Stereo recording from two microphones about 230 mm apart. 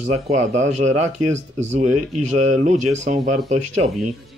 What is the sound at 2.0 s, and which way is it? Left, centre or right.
Speech, right.